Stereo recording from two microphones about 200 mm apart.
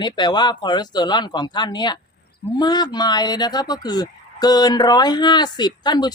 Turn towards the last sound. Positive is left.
turn(degrees=20)  # may be behind; listen again after turning